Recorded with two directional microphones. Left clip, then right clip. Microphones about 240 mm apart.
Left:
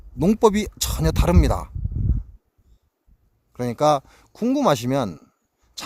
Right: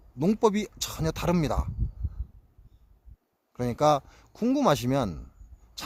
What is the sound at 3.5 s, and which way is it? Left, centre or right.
Speech, left.